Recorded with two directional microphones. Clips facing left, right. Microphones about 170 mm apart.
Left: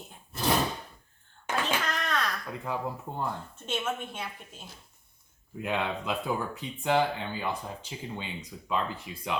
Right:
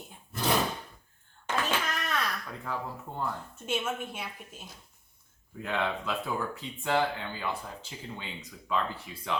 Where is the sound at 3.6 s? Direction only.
10° right (ahead or behind).